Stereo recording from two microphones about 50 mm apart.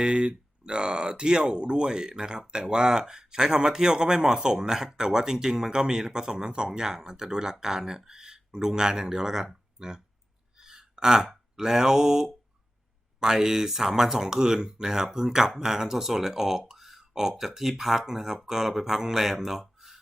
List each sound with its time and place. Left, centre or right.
0.0 s speech: centre